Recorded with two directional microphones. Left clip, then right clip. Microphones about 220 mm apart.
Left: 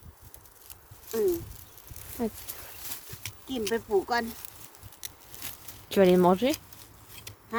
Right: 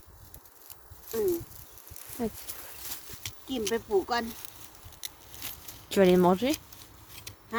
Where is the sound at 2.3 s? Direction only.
20° left (ahead or behind).